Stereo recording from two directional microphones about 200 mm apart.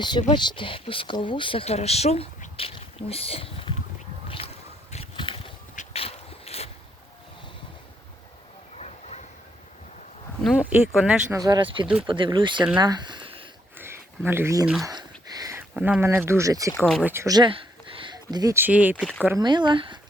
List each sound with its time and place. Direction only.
0.0 s speech: 20° left (ahead or behind)
4.9 s a sound: 30° left (ahead or behind)
8.8 s vehicle: 35° left (ahead or behind)
10.4 s speech: 5° right (ahead or behind)
11.3 s speech: 20° right (ahead or behind)
12.8 s a sound: 20° right (ahead or behind)
13.7 s a sound: 10° right (ahead or behind)
14.3 s speech: 10° right (ahead or behind)
14.8 s a sound: 20° right (ahead or behind)
15.7 s speech: 5° right (ahead or behind)
16.7 s speech: 5° left (ahead or behind)
17.0 s speech: 10° right (ahead or behind)
19.4 s speech: 20° right (ahead or behind)